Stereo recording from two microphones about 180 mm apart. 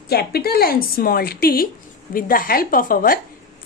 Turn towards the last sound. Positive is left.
turn(degrees=50)  # may be behind; listen again after turning